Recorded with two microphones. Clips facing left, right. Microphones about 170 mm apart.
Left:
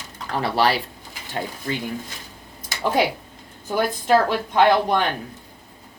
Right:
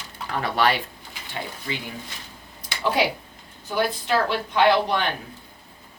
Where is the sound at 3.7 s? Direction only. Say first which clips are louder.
Left 4 dB; 45° left (ahead or behind).